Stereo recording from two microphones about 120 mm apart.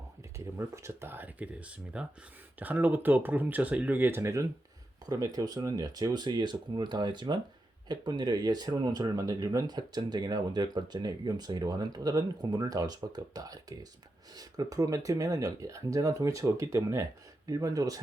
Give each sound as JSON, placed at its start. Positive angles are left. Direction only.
{"t": 0.3, "sound": "speech", "side_deg": -20}